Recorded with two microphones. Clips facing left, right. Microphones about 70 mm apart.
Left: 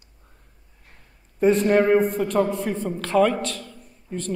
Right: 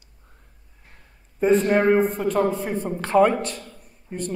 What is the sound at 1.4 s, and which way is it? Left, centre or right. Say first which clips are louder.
A man's voice: even; centre.